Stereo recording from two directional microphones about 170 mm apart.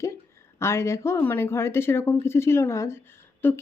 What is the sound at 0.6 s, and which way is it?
Speech, 15° left (ahead or behind).